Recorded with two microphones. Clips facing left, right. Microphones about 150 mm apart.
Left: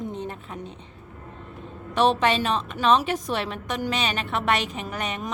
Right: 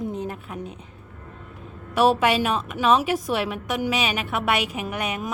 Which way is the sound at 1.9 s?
5° right (ahead or behind).